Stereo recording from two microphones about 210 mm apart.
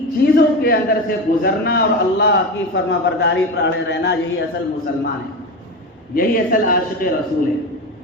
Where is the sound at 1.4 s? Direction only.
50° left (ahead or behind).